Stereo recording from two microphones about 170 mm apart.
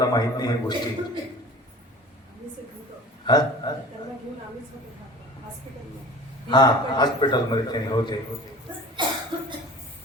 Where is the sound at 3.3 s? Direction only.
25° left (ahead or behind).